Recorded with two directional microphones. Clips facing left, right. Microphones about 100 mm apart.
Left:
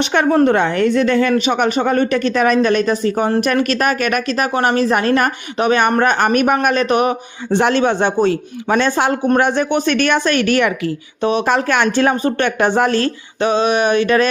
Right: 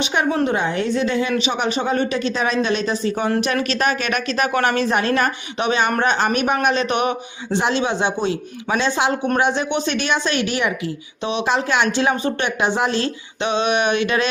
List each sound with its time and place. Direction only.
0.0 s a woman's voice: 65° left (ahead or behind)
1.3 s speech: 50° left (ahead or behind)
7.5 s speech: 55° left (ahead or behind)